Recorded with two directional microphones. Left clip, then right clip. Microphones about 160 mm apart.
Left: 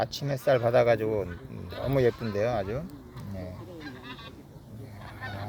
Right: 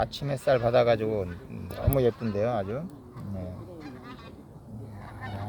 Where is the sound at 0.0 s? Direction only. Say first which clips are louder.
Even; 15° left (ahead or behind).